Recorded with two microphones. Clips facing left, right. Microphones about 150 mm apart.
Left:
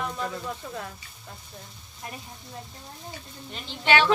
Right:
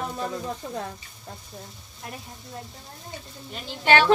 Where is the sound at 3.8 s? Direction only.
40° right (ahead or behind).